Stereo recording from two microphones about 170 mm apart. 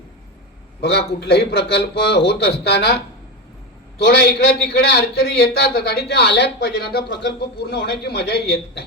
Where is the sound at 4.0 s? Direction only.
75° left (ahead or behind).